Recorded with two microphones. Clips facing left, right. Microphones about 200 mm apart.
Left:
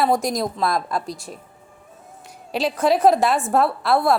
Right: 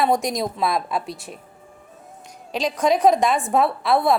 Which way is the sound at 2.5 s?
5° left (ahead or behind).